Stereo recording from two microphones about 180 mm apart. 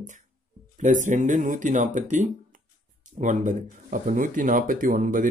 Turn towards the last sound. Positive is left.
turn(degrees=-50)  # may be behind; listen again after turning